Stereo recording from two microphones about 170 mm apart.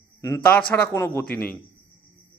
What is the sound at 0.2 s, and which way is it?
Speech, 20° left (ahead or behind).